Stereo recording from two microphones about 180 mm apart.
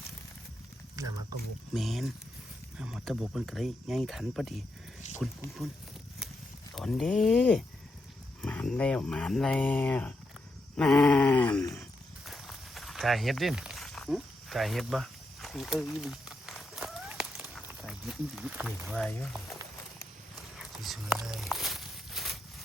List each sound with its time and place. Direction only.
1.0 s speech: 20° right (ahead or behind)
1.7 s speech: centre (ahead or behind)
6.7 s speech: centre (ahead or behind)
11.7 s walk: centre (ahead or behind)
17.8 s speech: centre (ahead or behind)
20.6 s whispering: centre (ahead or behind)